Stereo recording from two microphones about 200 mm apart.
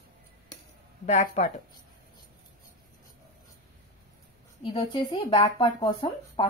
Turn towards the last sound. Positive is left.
turn(degrees=30)  # may be behind; listen again after turning